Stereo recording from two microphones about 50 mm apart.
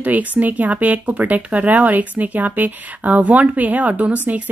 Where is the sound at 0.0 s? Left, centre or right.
Right.